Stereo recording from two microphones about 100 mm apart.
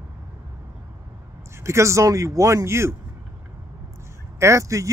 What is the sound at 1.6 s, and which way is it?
Speech, 30° right (ahead or behind).